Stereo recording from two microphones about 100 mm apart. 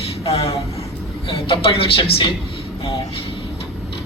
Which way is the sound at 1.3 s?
65° left (ahead or behind).